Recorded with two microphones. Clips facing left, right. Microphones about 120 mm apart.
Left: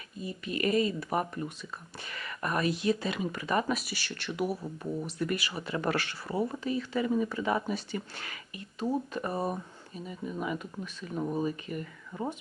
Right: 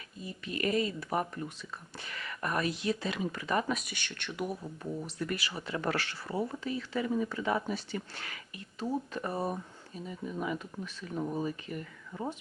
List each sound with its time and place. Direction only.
0.4 s speech: 15° left (ahead or behind)
4.8 s speech: 15° left (ahead or behind)